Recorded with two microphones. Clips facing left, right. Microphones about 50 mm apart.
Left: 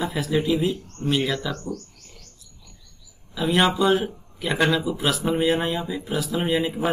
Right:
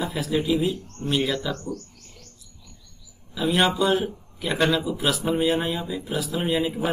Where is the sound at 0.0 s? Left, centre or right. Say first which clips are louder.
Left 2 dB; centre.